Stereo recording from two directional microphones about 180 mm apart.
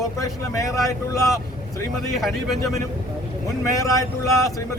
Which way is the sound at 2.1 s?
Centre (ahead or behind).